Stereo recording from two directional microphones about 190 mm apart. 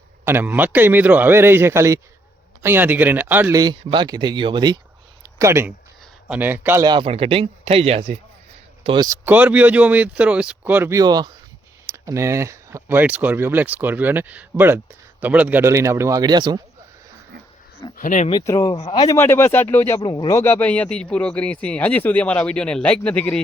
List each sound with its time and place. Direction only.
0.3 s speech: 10° right (ahead or behind)
3.6 s a man's voice: 25° right (ahead or behind)
8.8 s speech: 25° right (ahead or behind)
17.9 s speech: 45° left (ahead or behind)
18.3 s speech: 20° left (ahead or behind)
18.8 s a man's voice: 30° left (ahead or behind)
19.0 s speech: 10° left (ahead or behind)